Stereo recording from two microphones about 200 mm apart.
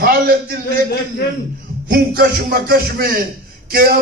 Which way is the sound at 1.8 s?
45° right (ahead or behind).